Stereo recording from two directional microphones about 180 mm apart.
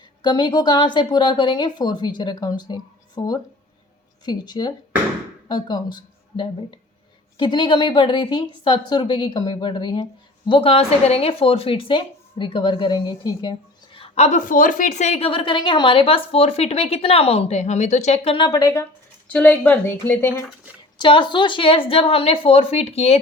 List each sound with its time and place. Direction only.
0.2 s a woman's voice: 25° left (ahead or behind)
21.0 s a woman's voice: 25° left (ahead or behind)